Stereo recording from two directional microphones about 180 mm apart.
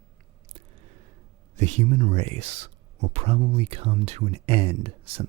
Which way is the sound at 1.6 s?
40° right (ahead or behind).